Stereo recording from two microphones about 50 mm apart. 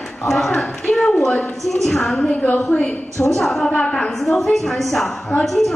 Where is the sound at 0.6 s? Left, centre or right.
Centre.